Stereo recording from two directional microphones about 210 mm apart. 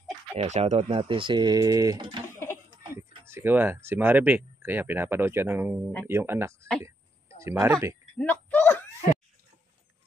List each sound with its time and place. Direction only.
0.4 s speech: 30° right (ahead or behind)
3.3 s speech: 10° right (ahead or behind)
8.2 s a sound: 5° left (ahead or behind)